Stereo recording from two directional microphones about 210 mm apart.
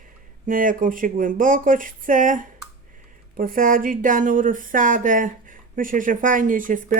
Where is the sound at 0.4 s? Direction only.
40° right (ahead or behind).